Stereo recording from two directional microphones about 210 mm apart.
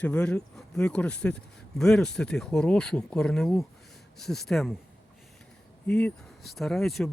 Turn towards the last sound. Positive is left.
turn(degrees=0)  # may be behind; listen again after turning